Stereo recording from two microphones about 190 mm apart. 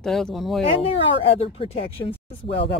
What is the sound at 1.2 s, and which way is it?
Speech, 30° left (ahead or behind).